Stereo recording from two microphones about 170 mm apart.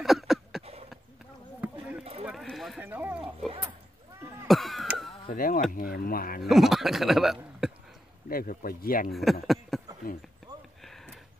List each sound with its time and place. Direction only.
0.0 s a sound: centre (ahead or behind)
2.2 s sheep: centre (ahead or behind)
2.8 s sheep: 10° right (ahead or behind)
4.5 s a sound: centre (ahead or behind)
5.3 s speech: 55° left (ahead or behind)
6.5 s a man's voice: centre (ahead or behind)
8.3 s speech: 60° left (ahead or behind)
9.1 s speech: centre (ahead or behind)
10.8 s a sound: centre (ahead or behind)